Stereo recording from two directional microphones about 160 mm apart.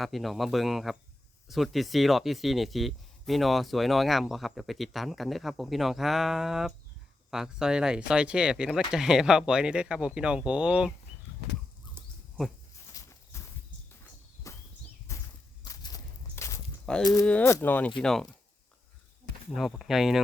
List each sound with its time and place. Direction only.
0.0 s speech: centre (ahead or behind)
12.9 s walk: 20° left (ahead or behind)
14.5 s a sound: 20° left (ahead or behind)
15.1 s walk: 20° left (ahead or behind)
17.0 s speech: 25° left (ahead or behind)
17.2 s speech: 10° left (ahead or behind)
19.5 s speech: centre (ahead or behind)